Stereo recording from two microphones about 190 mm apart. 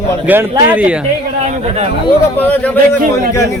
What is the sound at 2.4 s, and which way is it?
Speech, 10° left (ahead or behind).